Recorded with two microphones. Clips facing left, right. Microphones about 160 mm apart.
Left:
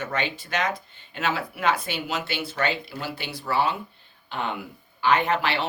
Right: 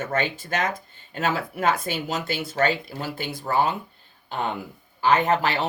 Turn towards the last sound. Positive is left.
turn(degrees=-40)  # may be behind; listen again after turning